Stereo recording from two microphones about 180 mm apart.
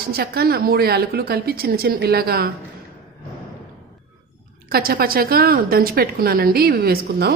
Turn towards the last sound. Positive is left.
turn(degrees=-60)  # may be behind; listen again after turning